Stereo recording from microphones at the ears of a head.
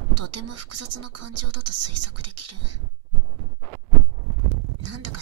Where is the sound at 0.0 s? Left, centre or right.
Right.